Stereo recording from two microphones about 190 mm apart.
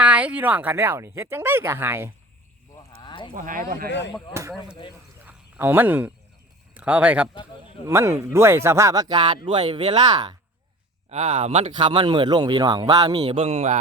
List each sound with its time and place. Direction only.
0.0 s speech: 5° right (ahead or behind)
2.7 s a sound: 25° left (ahead or behind)
3.3 s speech: 45° right (ahead or behind)
4.4 s speech: 15° right (ahead or behind)
5.2 s cricket: 10° right (ahead or behind)
6.7 s speech: 5° right (ahead or behind); by 10.3 s 20° right (ahead or behind)
11.1 s speech: 35° right (ahead or behind)